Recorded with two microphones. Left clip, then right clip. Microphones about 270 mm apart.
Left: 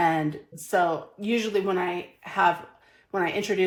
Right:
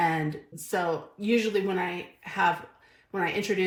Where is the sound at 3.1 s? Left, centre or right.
Left.